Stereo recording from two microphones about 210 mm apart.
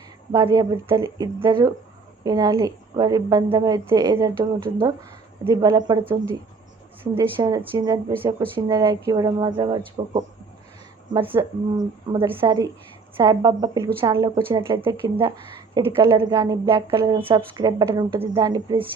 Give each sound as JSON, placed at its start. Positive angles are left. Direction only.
{"t": 0.3, "sound": "a woman's voice", "side_deg": -20}
{"t": 5.5, "sound": "a woman's voice", "side_deg": -20}